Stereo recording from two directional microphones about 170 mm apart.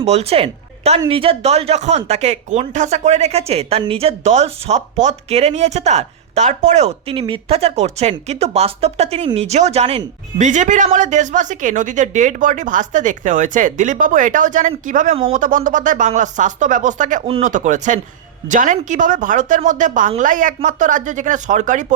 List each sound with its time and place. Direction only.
0.0 s speech: 35° right (ahead or behind)